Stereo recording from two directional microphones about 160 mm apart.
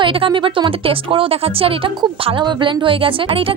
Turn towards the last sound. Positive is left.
turn(degrees=-35)  # may be behind; listen again after turning